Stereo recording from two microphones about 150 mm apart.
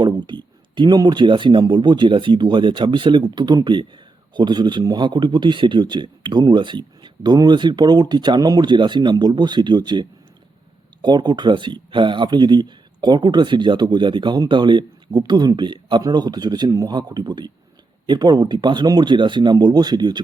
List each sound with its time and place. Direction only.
0.0 s speech: 30° right (ahead or behind)